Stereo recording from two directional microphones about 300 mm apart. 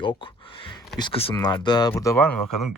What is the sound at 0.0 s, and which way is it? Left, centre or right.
Speech, centre.